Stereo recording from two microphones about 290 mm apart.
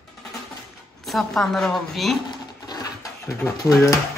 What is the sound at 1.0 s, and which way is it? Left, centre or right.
A woman's voice, centre.